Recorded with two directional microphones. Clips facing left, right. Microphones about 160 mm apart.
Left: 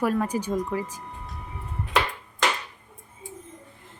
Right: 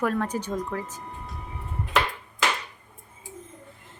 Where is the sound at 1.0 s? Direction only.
Centre (ahead or behind).